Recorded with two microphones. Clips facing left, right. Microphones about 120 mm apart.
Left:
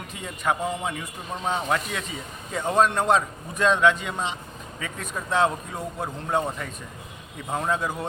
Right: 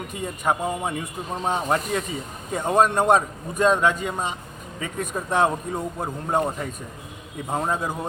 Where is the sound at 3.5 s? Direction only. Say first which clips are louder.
Right 1 dB; 45° right (ahead or behind).